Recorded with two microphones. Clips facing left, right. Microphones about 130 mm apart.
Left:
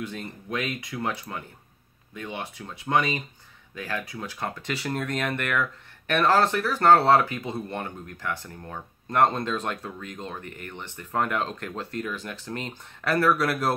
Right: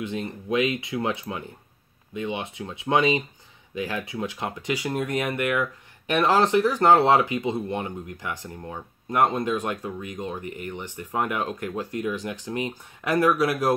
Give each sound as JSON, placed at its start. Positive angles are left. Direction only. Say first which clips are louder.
{"t": 0.0, "sound": "speech", "louder": "right 5 dB", "side_deg": -20}